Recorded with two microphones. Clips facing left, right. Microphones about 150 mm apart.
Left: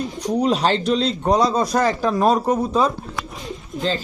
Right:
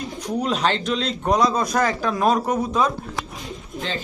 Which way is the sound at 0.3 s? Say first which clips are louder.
Left 3 dB; 35° left (ahead or behind).